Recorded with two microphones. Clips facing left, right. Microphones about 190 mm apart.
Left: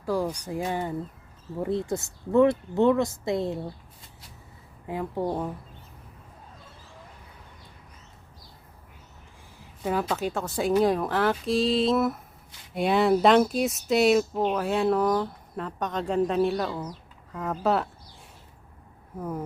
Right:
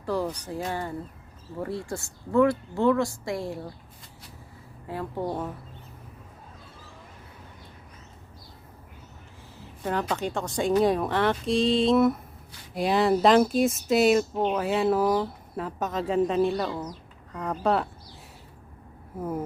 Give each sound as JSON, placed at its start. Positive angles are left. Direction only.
{"t": 0.0, "sound": "speech", "side_deg": 10}
{"t": 4.9, "sound": "a woman's voice", "side_deg": 15}
{"t": 9.6, "sound": "speech", "side_deg": 5}